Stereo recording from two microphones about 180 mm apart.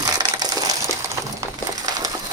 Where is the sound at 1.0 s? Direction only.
20° right (ahead or behind).